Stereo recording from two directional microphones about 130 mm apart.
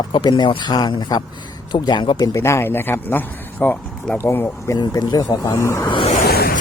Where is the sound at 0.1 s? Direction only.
35° left (ahead or behind).